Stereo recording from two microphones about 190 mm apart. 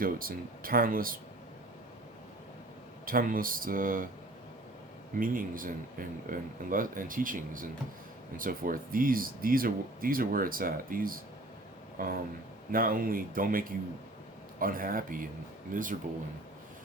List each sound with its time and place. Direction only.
0.0 s speech: 50° right (ahead or behind)
3.1 s speech: 50° right (ahead or behind)
5.2 s speech: 45° right (ahead or behind)